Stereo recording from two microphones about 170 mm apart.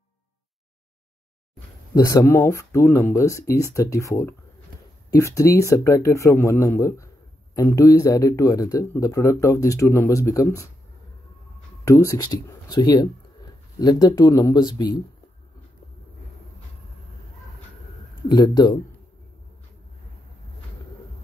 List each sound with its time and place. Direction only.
2.0 s speech: 20° left (ahead or behind)
5.2 s speech: 15° left (ahead or behind)
11.8 s speech: 20° left (ahead or behind)
18.3 s speech: 25° left (ahead or behind)